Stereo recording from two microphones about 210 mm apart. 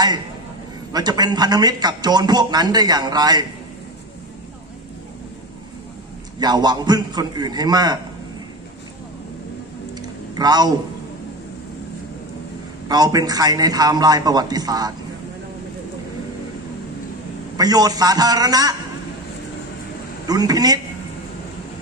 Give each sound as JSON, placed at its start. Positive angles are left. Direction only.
{"t": 0.9, "sound": "a man's voice", "side_deg": -20}
{"t": 6.4, "sound": "a man's voice", "side_deg": -20}
{"t": 10.0, "sound": "a sound", "side_deg": -20}
{"t": 12.8, "sound": "a man's voice", "side_deg": -20}
{"t": 17.6, "sound": "a man's voice", "side_deg": -20}
{"t": 20.2, "sound": "a man's voice", "side_deg": -20}